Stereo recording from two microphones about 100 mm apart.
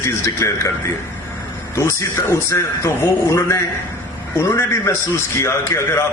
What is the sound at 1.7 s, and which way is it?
A man's voice, 30° left (ahead or behind).